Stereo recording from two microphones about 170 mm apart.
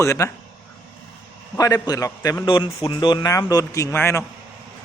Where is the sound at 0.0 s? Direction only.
15° left (ahead or behind).